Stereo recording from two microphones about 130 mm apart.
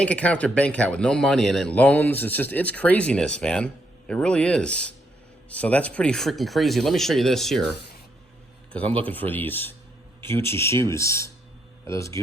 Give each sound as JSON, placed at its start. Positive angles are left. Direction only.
{"t": 0.0, "sound": "speech", "side_deg": 10}
{"t": 8.7, "sound": "speech", "side_deg": 10}